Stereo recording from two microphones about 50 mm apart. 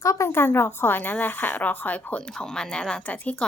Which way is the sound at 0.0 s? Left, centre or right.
Left.